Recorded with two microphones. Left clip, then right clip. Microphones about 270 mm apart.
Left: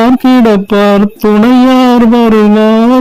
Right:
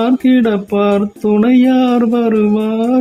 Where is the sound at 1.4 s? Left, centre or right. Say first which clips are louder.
Left 5 dB; left.